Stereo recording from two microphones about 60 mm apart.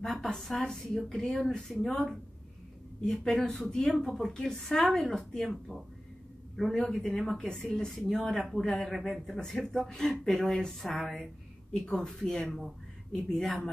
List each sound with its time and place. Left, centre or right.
0.0 s a woman's voice: centre